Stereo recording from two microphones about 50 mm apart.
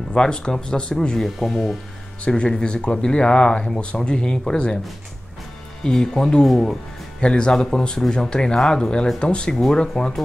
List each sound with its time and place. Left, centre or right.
0.1 s speech: centre
2.2 s speech: left
5.9 s speech: centre